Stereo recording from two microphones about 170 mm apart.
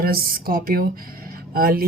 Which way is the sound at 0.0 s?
60° right (ahead or behind).